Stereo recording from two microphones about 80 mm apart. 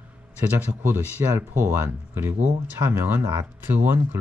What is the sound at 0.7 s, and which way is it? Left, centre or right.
Speech, right.